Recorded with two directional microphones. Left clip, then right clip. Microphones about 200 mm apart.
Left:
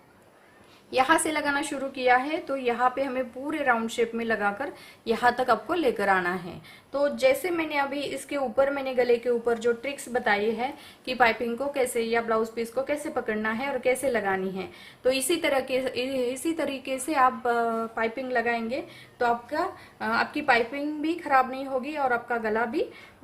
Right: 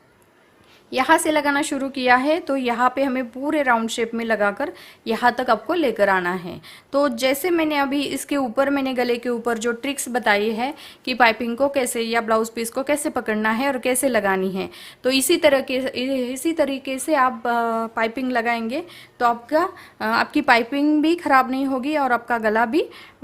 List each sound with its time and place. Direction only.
0.9 s a woman's voice: 30° right (ahead or behind)
6.9 s speech: 50° right (ahead or behind)